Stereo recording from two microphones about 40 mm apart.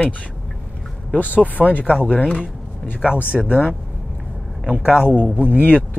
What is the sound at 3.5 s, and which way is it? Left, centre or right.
Speech, left.